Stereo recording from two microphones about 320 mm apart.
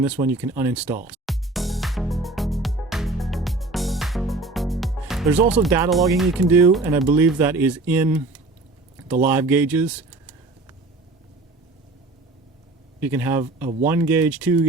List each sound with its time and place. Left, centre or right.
0.0 s speech: centre
1.0 s music: centre
5.6 s speech: centre
13.0 s speech: centre